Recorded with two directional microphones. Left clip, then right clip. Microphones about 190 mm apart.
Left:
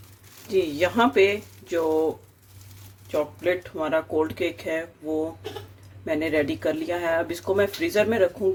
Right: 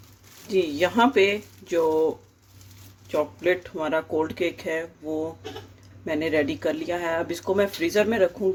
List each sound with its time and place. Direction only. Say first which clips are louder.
0.4 s speech: even; 20° right (ahead or behind)
3.1 s speech: right 1 dB; 30° right (ahead or behind)